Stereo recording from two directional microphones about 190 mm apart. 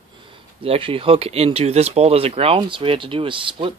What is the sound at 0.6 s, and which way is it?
Speech, 30° right (ahead or behind).